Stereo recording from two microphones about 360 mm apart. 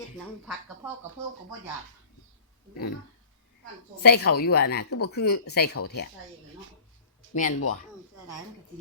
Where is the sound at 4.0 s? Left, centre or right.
Left.